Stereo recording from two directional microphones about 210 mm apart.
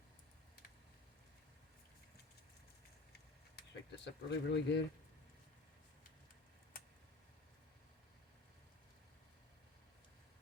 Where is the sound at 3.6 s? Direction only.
55° left (ahead or behind).